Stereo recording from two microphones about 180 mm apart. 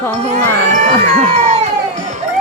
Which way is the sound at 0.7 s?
40° right (ahead or behind).